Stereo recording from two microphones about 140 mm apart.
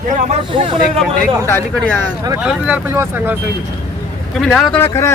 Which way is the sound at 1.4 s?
15° left (ahead or behind).